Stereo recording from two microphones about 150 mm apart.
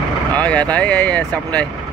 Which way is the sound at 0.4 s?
10° left (ahead or behind).